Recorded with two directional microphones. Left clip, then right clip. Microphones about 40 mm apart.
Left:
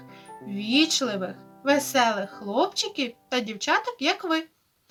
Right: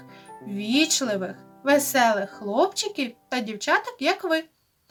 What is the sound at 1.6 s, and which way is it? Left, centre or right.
Speech, right.